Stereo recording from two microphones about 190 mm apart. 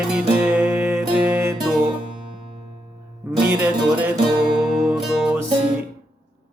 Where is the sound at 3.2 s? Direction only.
10° right (ahead or behind).